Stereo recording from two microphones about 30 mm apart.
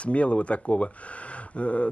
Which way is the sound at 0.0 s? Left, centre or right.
Left.